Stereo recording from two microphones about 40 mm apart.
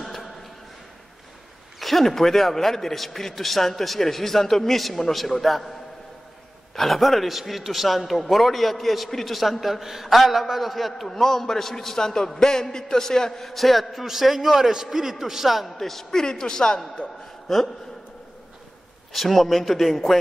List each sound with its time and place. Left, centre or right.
0.0 s a sound: centre
1.8 s a man's voice: centre
6.7 s a man's voice: centre
15.8 s a man's voice: centre
17.5 s a man's voice: centre
19.1 s a man's voice: centre